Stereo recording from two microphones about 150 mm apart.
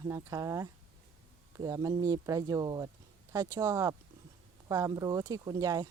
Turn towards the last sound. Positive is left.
turn(degrees=-25)  # may be behind; listen again after turning